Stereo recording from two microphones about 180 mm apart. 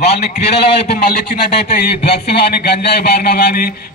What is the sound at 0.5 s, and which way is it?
Speech, 30° left (ahead or behind).